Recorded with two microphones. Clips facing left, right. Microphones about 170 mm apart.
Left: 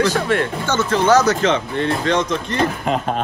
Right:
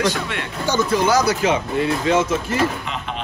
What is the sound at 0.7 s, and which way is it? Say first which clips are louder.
Speech: left 1 dB; 10° right (ahead or behind).